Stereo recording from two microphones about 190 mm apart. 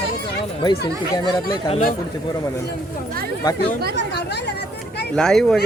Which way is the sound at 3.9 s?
60° left (ahead or behind).